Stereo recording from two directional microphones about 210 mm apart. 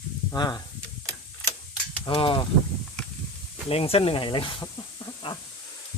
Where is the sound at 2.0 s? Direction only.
25° left (ahead or behind).